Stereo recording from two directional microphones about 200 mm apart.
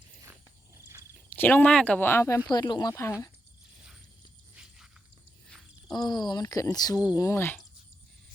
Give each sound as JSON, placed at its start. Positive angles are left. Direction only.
{"t": 1.3, "sound": "speech", "side_deg": 10}
{"t": 5.9, "sound": "speech", "side_deg": 20}